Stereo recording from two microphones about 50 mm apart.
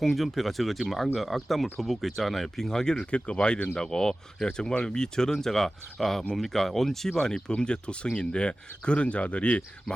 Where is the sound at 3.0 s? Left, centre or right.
Left.